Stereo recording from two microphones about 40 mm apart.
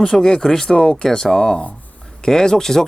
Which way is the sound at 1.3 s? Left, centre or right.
Left.